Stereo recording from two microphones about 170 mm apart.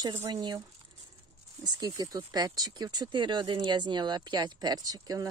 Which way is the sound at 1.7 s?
20° right (ahead or behind).